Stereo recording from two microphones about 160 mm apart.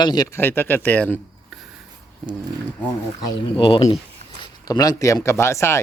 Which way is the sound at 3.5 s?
35° left (ahead or behind).